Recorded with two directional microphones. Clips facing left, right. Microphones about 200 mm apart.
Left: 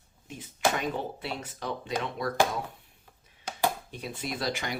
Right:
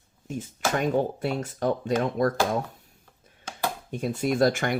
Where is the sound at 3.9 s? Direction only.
45° right (ahead or behind).